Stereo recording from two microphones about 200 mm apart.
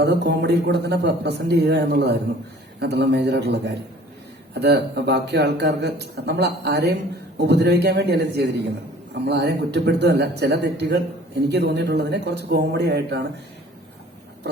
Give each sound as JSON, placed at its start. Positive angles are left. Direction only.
{"t": 0.0, "sound": "speech", "side_deg": -55}